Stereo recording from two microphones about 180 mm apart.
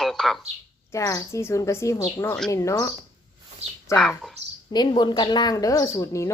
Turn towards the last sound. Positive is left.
turn(degrees=15)  # may be behind; listen again after turning